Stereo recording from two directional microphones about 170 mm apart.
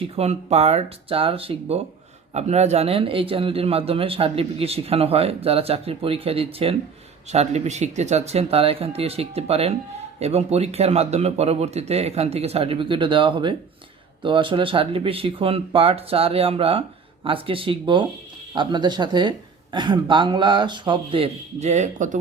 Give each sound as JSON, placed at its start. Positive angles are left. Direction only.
{"t": 0.2, "sound": "a man's voice", "side_deg": -40}